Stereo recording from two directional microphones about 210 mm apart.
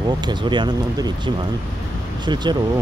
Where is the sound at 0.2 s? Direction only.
20° right (ahead or behind).